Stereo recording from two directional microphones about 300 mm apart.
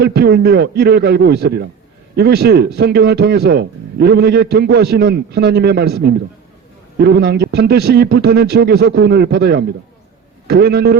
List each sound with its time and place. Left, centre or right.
0.0 s a man's voice: right